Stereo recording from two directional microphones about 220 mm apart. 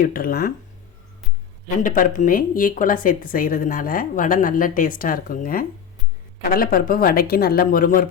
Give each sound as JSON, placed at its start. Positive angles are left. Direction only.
{"t": 0.0, "sound": "speech", "side_deg": 40}
{"t": 1.8, "sound": "speech", "side_deg": 35}